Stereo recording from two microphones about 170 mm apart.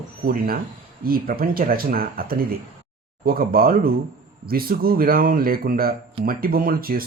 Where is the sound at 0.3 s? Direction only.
60° right (ahead or behind).